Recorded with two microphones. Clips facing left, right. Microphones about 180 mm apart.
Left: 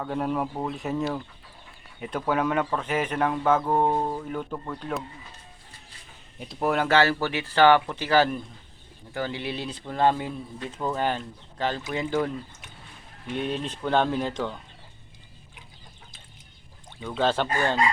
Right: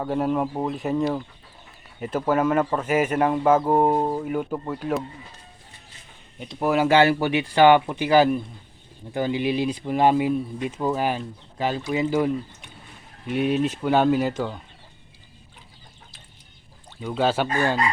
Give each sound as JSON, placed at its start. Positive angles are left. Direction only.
{"t": 0.1, "sound": "speech", "side_deg": 0}
{"t": 6.4, "sound": "speech", "side_deg": 0}
{"t": 17.0, "sound": "speech", "side_deg": -10}